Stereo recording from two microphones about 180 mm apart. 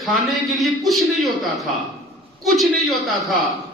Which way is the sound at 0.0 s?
Centre (ahead or behind).